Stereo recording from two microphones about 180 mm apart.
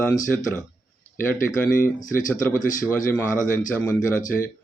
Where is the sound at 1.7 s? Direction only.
50° left (ahead or behind).